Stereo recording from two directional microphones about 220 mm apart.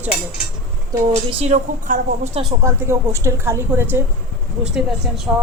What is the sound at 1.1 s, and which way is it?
A woman's voice, 30° right (ahead or behind).